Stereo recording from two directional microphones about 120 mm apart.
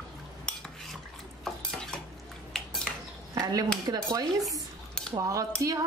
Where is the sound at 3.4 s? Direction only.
30° right (ahead or behind).